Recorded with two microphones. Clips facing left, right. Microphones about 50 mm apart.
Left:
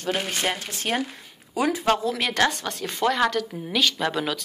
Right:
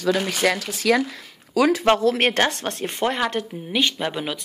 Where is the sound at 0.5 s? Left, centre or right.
Right.